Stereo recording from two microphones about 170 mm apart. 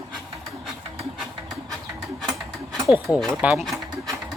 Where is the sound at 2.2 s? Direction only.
Centre (ahead or behind).